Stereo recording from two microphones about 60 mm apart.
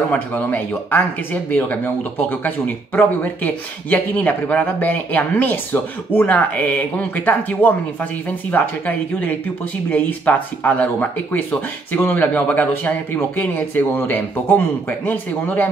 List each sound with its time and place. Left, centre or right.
0.1 s speech: left